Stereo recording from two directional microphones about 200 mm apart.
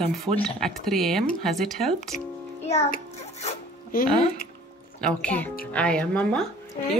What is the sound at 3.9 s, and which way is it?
Speech, 45° left (ahead or behind).